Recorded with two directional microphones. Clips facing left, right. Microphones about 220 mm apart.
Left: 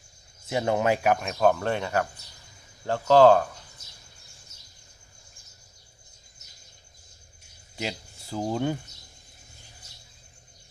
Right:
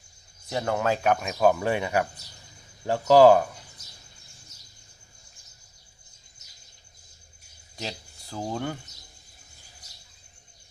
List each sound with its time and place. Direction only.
0.5 s speech: 20° left (ahead or behind)
1.0 s speech: centre (ahead or behind)
7.8 s speech: 15° left (ahead or behind)